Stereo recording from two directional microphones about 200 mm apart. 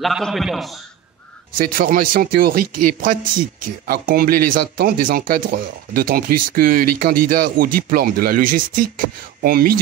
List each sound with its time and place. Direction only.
0.0 s a man's voice: centre (ahead or behind)
1.6 s speech: 45° right (ahead or behind)